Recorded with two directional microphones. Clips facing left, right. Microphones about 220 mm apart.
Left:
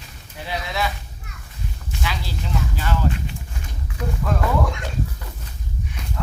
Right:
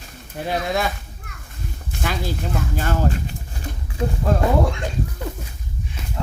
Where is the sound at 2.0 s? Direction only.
50° right (ahead or behind); by 4.8 s 30° right (ahead or behind).